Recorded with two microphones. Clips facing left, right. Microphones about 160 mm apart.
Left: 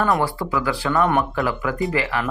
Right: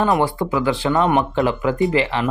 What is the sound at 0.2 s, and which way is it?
Speech, 20° right (ahead or behind).